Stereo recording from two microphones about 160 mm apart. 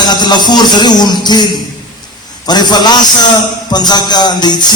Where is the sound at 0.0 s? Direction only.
25° left (ahead or behind).